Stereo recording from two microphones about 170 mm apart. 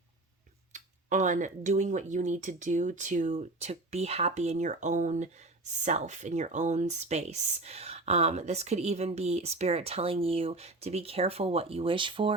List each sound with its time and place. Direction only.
0.7 s speech: 45° right (ahead or behind); by 12.3 s 30° right (ahead or behind)